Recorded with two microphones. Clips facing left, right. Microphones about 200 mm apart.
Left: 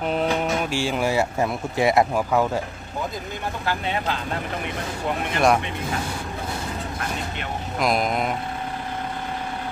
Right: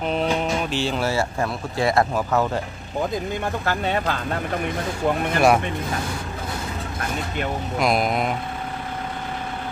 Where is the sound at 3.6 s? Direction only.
45° right (ahead or behind).